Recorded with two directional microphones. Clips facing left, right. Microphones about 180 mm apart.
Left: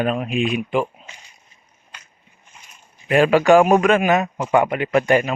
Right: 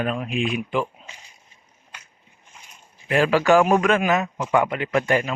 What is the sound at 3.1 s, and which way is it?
Speech, 20° left (ahead or behind).